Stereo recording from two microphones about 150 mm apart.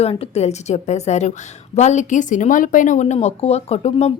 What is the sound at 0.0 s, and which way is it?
A woman's voice, 40° left (ahead or behind).